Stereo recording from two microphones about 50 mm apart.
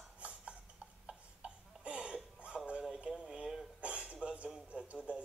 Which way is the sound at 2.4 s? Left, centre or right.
Right.